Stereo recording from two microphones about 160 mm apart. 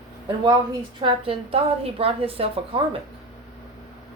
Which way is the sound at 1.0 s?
35° right (ahead or behind).